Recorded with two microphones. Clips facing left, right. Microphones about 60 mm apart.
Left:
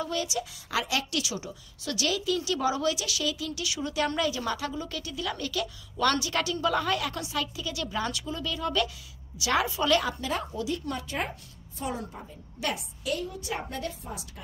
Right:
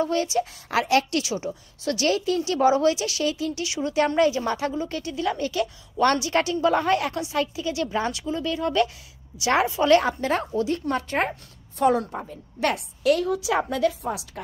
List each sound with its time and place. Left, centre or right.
0.0 s a woman's voice: right
14.0 s a woman's voice: right